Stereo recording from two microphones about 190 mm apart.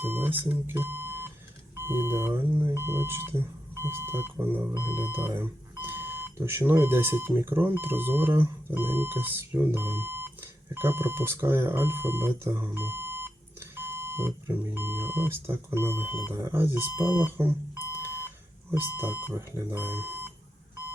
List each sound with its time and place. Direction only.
0.0 s speech: 10° right (ahead or behind)
17.9 s alarm clock: 10° right (ahead or behind)
18.7 s speech: 10° right (ahead or behind)